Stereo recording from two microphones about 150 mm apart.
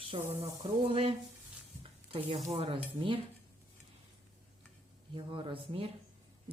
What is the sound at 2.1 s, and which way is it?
A woman's voice, 40° right (ahead or behind).